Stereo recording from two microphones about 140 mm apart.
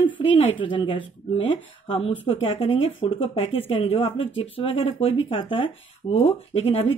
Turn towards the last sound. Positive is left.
turn(degrees=45)  # may be behind; listen again after turning